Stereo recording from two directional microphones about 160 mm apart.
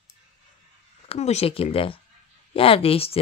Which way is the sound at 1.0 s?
40° left (ahead or behind).